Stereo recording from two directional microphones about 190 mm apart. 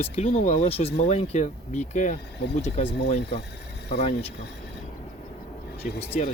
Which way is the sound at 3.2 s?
60° left (ahead or behind).